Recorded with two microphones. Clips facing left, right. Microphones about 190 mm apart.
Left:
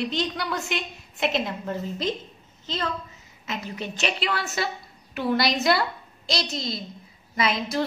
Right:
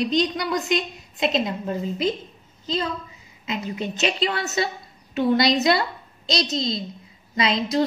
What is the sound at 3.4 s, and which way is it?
A woman's voice, 15° right (ahead or behind).